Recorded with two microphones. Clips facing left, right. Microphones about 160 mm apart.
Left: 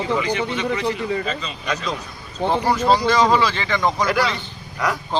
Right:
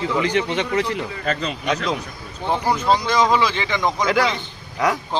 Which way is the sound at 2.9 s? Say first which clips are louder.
Left 1 dB; 15° right (ahead or behind).